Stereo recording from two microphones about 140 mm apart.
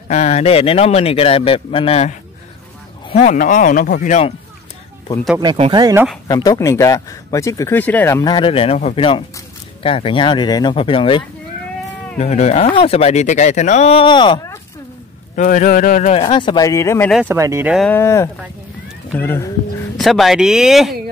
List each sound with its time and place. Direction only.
0.1 s a man's voice: 50° left (ahead or behind)
3.3 s speech: 70° left (ahead or behind)
5.4 s speech: 35° right (ahead or behind)
6.2 s speech: 25° left (ahead or behind)
8.3 s speech: 40° left (ahead or behind)
12.2 s a man's voice: 50° left (ahead or behind)
14.0 s speech: 35° left (ahead or behind)
15.3 s speech: 65° left (ahead or behind)
16.1 s speech: 40° left (ahead or behind); by 17.1 s 20° left (ahead or behind)
17.3 s speech: 20° right (ahead or behind)
17.8 s speech: 15° left (ahead or behind)
20.0 s speech: centre (ahead or behind)